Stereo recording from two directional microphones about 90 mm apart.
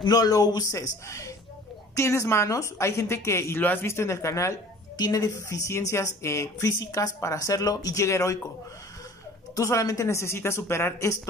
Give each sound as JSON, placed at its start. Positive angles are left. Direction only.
{"t": 0.1, "sound": "speech", "side_deg": 45}
{"t": 4.9, "sound": "speech", "side_deg": 45}
{"t": 9.6, "sound": "speech", "side_deg": 40}